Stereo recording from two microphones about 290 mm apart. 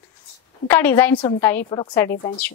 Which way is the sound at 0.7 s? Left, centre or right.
Centre.